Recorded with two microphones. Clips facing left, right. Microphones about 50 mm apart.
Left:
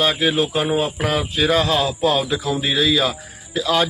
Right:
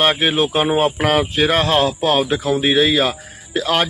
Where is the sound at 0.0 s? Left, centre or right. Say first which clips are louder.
Right 2 dB; right.